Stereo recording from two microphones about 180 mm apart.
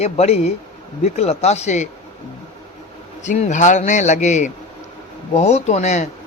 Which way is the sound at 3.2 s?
40° left (ahead or behind).